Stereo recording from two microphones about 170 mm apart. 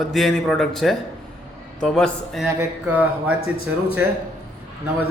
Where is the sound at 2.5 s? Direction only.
10° right (ahead or behind).